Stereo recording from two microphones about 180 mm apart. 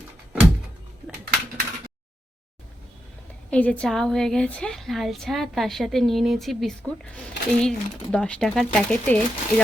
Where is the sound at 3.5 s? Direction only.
5° left (ahead or behind).